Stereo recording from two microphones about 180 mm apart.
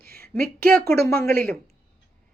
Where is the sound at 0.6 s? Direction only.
10° left (ahead or behind).